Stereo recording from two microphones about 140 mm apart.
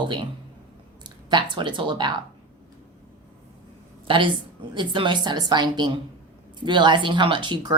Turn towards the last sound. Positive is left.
turn(degrees=-35)  # may be behind; listen again after turning